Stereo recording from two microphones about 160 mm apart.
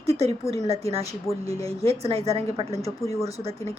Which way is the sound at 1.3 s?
Centre (ahead or behind).